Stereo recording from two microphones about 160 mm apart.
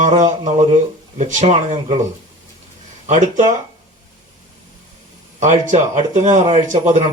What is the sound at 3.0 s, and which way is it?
Speech, 50° right (ahead or behind).